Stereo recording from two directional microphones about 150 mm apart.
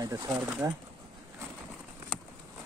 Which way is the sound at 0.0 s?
25° right (ahead or behind).